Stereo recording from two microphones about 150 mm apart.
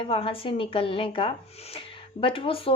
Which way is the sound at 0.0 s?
40° left (ahead or behind).